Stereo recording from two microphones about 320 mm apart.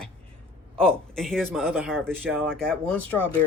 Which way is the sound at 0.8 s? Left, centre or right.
Centre.